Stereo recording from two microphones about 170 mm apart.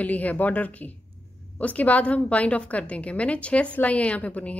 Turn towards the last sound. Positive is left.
turn(degrees=10)  # may be behind; listen again after turning